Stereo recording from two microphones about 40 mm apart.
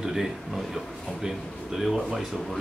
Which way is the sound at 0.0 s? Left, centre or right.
Centre.